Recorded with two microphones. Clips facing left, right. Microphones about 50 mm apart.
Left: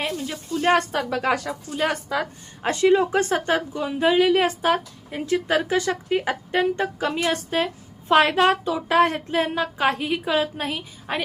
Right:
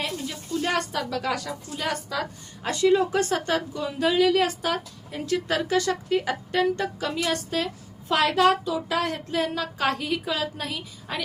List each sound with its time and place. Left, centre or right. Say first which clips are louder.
0.6 s a woman's voice: left 7 dB; left